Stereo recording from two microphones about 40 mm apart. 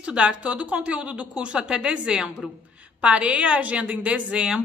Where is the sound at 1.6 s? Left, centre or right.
Right.